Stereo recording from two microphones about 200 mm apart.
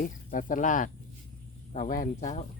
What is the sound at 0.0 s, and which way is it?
Speech, 40° left (ahead or behind).